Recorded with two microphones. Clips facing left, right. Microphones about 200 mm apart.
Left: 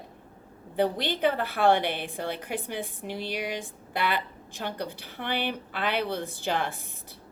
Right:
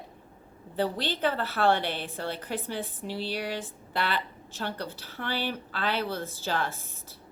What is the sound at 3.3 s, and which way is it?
Speech, 15° left (ahead or behind).